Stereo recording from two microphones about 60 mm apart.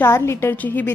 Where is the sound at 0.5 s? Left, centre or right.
Left.